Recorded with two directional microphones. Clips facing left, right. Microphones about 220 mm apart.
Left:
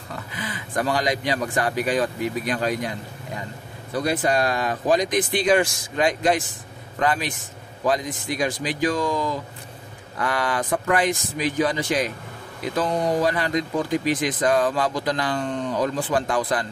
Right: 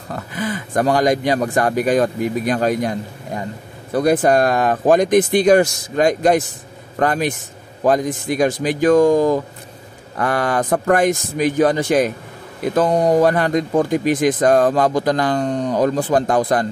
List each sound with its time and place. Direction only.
0.1 s speech: 45° right (ahead or behind)